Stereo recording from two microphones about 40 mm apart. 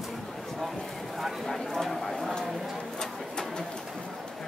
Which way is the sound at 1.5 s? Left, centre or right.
Centre.